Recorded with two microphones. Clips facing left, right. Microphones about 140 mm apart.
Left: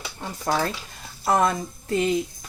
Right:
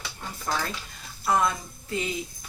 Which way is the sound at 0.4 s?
45° left (ahead or behind).